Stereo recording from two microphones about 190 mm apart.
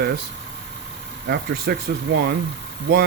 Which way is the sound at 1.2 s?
55° right (ahead or behind).